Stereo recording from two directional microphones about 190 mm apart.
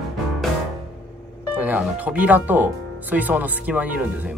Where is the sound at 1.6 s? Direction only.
10° right (ahead or behind).